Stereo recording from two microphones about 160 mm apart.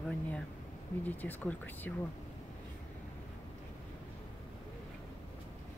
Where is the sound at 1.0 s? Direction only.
10° left (ahead or behind).